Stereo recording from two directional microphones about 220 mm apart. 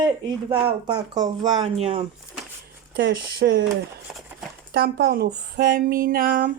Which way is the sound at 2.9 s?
45° right (ahead or behind).